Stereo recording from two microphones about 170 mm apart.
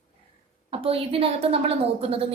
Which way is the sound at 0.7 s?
35° right (ahead or behind).